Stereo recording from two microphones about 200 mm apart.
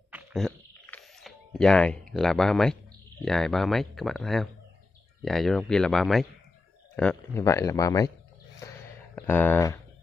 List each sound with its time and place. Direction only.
0.1 s a sound: centre (ahead or behind)
3.3 s speech: centre (ahead or behind)
9.2 s speech: 10° left (ahead or behind)